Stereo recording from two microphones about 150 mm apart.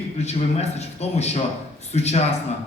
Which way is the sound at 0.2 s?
45° left (ahead or behind).